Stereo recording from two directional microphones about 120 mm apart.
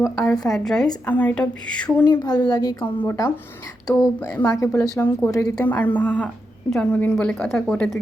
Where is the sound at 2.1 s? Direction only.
35° left (ahead or behind).